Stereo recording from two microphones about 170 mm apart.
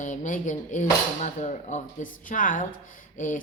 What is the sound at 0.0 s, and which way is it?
A woman's voice, 50° left (ahead or behind).